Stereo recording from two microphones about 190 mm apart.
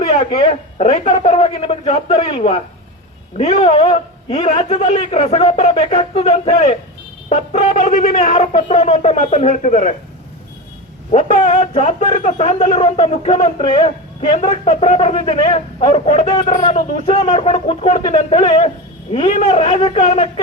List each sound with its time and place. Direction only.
0.1 s a man's voice: 30° left (ahead or behind)
11.1 s a man's voice: 35° left (ahead or behind)